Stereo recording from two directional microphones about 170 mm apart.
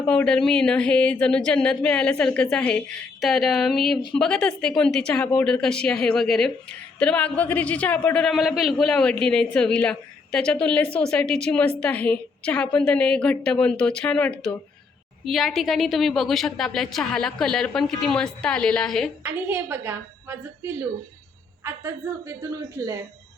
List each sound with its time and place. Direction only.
0.1 s a woman's voice: 5° left (ahead or behind)
19.2 s a woman's voice: 10° right (ahead or behind)